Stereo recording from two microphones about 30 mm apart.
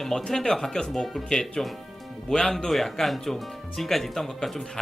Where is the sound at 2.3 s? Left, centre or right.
Left.